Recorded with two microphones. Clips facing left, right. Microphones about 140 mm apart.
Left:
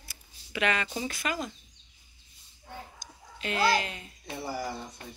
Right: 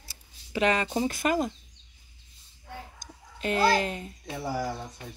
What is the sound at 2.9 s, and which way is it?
Chicken, 45° right (ahead or behind).